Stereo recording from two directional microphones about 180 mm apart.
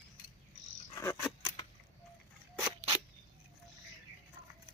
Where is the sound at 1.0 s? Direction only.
15° left (ahead or behind).